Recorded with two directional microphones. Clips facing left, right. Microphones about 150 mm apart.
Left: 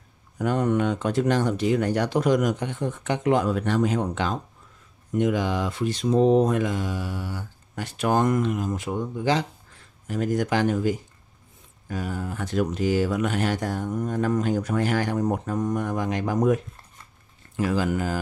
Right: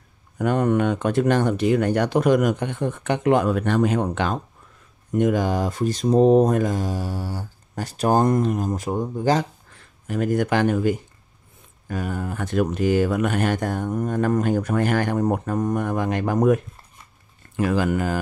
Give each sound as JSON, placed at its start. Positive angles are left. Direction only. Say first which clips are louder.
{"t": 0.4, "sound": "speech", "louder": "right 3 dB", "side_deg": -55}
{"t": 5.1, "sound": "speech", "louder": "right 3 dB", "side_deg": -50}
{"t": 10.0, "sound": "speech", "louder": "right 3 dB", "side_deg": -60}